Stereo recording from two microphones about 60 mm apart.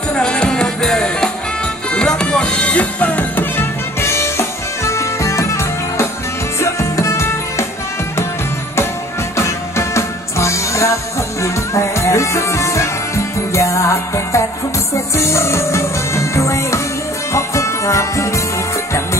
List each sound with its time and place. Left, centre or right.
0.2 s music: centre
3.5 s music: left
9.4 s music: left
15.1 s music: left